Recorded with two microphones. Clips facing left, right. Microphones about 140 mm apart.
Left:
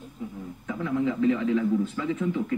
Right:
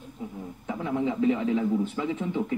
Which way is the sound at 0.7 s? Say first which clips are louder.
Left 1 dB; 30° right (ahead or behind).